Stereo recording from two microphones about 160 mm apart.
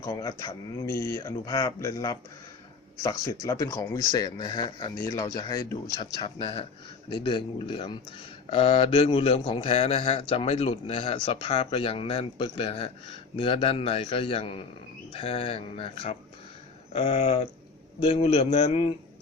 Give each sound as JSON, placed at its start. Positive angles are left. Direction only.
{"t": 0.0, "sound": "speech", "side_deg": 20}
{"t": 6.2, "sound": "speech", "side_deg": 40}
{"t": 16.9, "sound": "a sound", "side_deg": 45}
{"t": 18.0, "sound": "speech", "side_deg": 40}